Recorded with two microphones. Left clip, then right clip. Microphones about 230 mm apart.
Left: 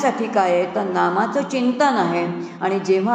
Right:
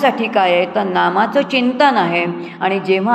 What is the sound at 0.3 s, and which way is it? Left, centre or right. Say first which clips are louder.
A woman's voice: right 4 dB; right.